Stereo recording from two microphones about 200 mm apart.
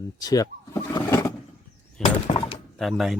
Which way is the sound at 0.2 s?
20° left (ahead or behind).